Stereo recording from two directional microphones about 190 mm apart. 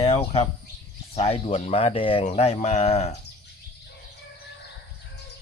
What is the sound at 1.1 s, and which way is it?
Speech, 30° left (ahead or behind).